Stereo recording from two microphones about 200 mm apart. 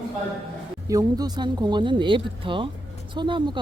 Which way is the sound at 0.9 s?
20° right (ahead or behind).